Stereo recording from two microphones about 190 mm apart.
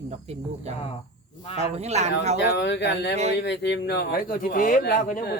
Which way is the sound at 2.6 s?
65° left (ahead or behind).